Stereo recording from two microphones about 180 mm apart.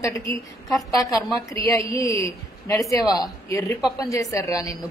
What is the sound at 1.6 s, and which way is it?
A woman's voice, 15° left (ahead or behind).